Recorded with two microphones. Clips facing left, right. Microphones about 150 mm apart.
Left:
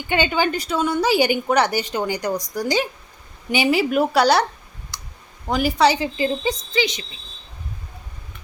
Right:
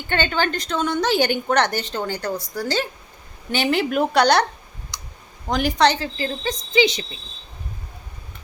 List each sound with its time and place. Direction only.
0.1 s a woman's voice: 10° left (ahead or behind)
4.9 s clicking: 5° left (ahead or behind)
5.5 s a woman's voice: 5° left (ahead or behind)
6.7 s speech: 30° right (ahead or behind)